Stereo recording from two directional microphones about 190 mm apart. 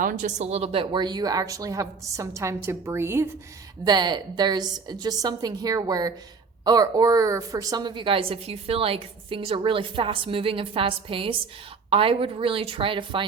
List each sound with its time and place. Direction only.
0.0 s a woman's voice: 45° right (ahead or behind); by 13.2 s 25° right (ahead or behind)